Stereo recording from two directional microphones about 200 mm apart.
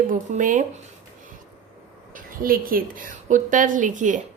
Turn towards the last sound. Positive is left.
turn(degrees=-40)  # may be behind; listen again after turning